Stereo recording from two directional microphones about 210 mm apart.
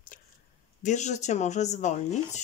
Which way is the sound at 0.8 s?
35° left (ahead or behind).